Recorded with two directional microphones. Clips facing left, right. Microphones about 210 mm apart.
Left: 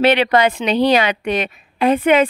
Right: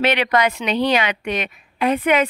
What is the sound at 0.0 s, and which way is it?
A woman's voice, 30° left (ahead or behind).